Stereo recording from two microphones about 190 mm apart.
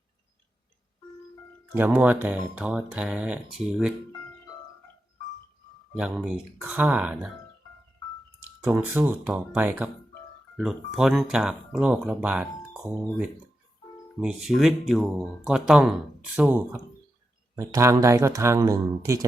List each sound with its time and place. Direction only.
1.7 s speech: 10° right (ahead or behind)
6.0 s speech: 5° right (ahead or behind)
8.6 s speech: 5° right (ahead or behind)